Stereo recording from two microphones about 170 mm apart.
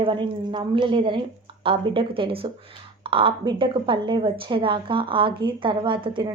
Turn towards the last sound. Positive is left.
turn(degrees=-30)  # may be behind; listen again after turning